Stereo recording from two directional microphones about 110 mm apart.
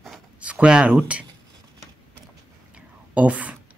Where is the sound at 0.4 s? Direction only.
10° right (ahead or behind).